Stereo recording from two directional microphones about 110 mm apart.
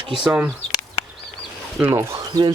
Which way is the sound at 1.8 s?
25° right (ahead or behind).